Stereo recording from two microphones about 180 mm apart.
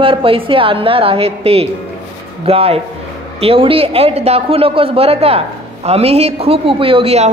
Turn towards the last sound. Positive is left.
turn(degrees=-30)  # may be behind; listen again after turning